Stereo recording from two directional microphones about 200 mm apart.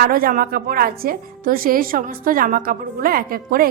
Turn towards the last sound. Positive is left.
turn(degrees=-45)  # may be behind; listen again after turning